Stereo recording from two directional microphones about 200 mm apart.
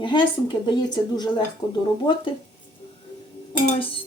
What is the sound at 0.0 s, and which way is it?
A woman's voice, 25° left (ahead or behind).